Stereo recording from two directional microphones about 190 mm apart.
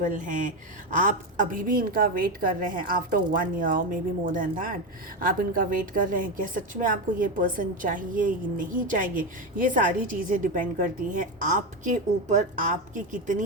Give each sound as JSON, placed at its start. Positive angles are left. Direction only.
{"t": 0.0, "sound": "a woman's voice", "side_deg": -45}